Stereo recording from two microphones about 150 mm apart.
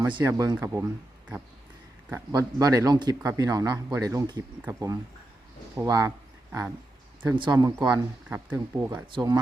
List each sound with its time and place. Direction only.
0.3 s speech: 25° right (ahead or behind)
2.0 s speech: 20° right (ahead or behind)
7.9 s speech: 15° right (ahead or behind)
9.1 s speech: 25° right (ahead or behind)